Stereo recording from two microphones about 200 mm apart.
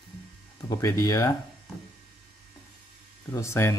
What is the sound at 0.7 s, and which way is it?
Speech, 15° left (ahead or behind).